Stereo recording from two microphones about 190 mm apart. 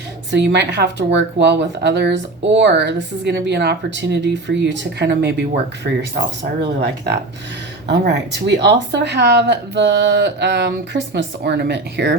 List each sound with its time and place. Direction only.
0.3 s speech: 70° right (ahead or behind)